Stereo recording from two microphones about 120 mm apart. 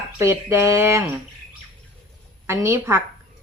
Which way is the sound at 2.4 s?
20° right (ahead or behind).